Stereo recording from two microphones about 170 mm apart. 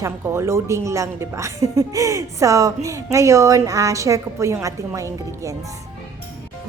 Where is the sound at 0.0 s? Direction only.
15° right (ahead or behind).